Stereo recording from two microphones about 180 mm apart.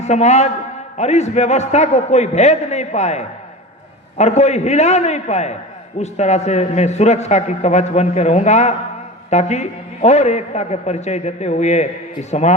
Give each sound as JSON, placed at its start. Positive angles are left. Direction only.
{"t": 0.0, "sound": "a man's voice", "side_deg": 40}